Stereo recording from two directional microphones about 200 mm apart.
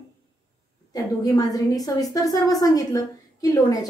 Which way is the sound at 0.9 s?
20° left (ahead or behind).